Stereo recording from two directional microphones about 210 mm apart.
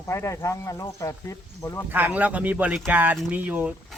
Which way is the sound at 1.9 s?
5° right (ahead or behind).